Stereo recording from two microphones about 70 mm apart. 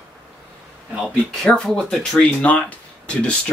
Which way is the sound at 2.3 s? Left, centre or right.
Centre.